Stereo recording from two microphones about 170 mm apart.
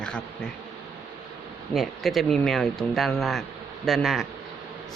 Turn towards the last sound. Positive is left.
turn(degrees=0)  # may be behind; listen again after turning